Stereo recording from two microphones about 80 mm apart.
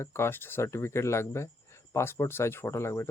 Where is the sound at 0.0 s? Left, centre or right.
Left.